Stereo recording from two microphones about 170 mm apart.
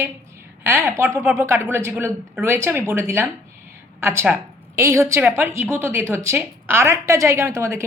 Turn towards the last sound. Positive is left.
turn(degrees=-15)  # may be behind; listen again after turning